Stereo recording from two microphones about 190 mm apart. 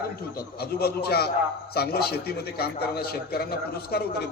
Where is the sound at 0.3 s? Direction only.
55° left (ahead or behind).